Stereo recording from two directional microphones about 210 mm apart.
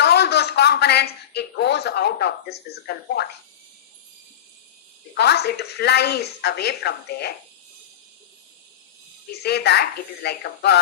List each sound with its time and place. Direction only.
0.0 s a man's voice: 50° left (ahead or behind)
5.1 s a woman's voice: 50° left (ahead or behind)
9.4 s a woman's voice: 50° left (ahead or behind)